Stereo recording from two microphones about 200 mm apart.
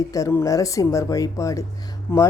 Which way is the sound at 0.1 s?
15° left (ahead or behind).